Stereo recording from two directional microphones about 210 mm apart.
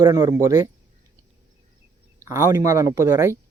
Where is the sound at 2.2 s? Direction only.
15° right (ahead or behind).